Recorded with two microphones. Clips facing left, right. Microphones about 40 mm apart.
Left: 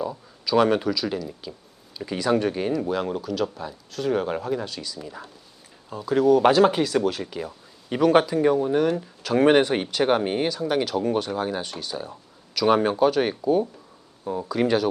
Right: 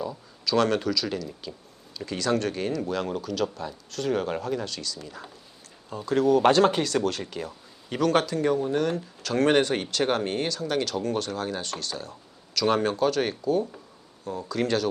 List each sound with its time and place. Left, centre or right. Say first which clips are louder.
0.0 s speech: left 2 dB; centre